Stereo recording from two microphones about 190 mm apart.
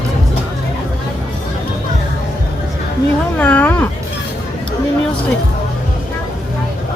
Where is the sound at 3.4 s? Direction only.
10° left (ahead or behind).